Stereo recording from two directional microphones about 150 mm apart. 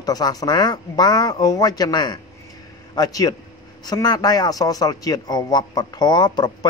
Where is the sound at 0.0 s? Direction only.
25° left (ahead or behind).